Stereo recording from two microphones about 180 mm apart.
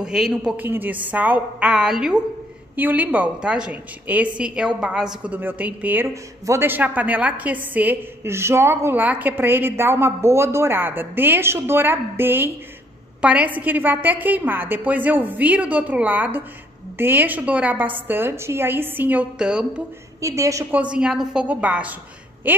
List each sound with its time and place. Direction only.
0.0 s a woman's voice: 5° right (ahead or behind)
20.2 s a woman's voice: 15° right (ahead or behind)
20.8 s a woman's voice: 5° right (ahead or behind)